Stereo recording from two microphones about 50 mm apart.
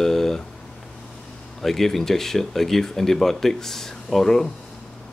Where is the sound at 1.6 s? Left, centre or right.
Centre.